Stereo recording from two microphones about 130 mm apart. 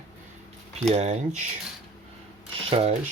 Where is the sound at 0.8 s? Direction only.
60° right (ahead or behind).